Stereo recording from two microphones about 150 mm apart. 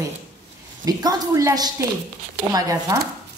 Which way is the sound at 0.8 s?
25° right (ahead or behind).